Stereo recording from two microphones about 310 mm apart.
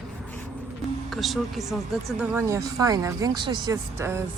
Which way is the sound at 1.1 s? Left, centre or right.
Centre.